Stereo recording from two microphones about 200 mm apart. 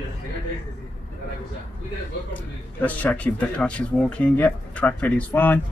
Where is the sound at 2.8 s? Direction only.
5° left (ahead or behind).